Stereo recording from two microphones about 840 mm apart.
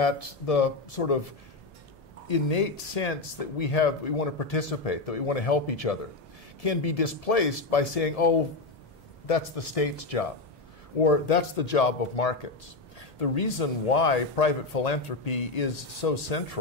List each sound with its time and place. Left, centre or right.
0.0 s speech: left
2.2 s speech: left